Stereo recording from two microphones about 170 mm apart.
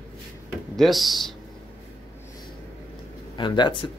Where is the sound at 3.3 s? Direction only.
25° left (ahead or behind).